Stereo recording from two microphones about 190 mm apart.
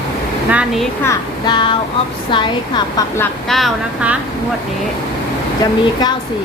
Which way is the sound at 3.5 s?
5° right (ahead or behind).